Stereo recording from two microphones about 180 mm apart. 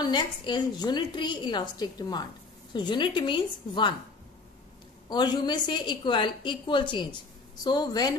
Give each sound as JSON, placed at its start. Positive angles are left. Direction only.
{"t": 0.0, "sound": "a woman's voice", "side_deg": 25}
{"t": 5.1, "sound": "a woman's voice", "side_deg": 25}